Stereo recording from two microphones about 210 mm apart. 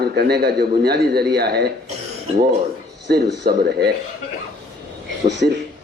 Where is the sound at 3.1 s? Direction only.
50° right (ahead or behind).